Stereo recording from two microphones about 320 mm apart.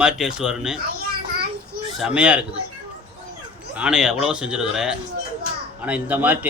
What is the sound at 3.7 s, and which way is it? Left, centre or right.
A man's voice, centre.